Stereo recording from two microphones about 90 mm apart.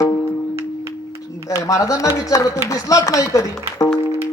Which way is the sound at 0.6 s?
90° right.